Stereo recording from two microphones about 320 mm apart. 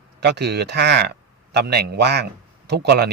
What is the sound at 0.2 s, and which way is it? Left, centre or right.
Speech, right.